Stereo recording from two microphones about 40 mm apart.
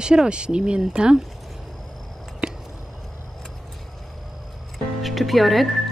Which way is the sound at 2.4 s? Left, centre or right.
Right.